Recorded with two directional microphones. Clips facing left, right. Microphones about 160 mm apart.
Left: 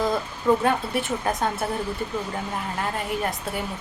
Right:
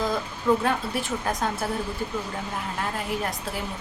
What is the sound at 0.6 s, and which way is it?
A woman's voice, centre (ahead or behind).